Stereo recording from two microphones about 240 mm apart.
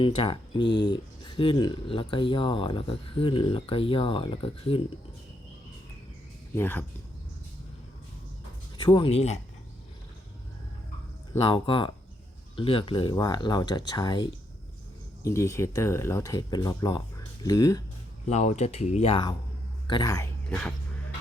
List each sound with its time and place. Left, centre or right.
0.0 s speech: left
6.6 s speech: centre
8.8 s speech: centre
11.4 s speech: left
18.3 s speech: left; by 20.7 s centre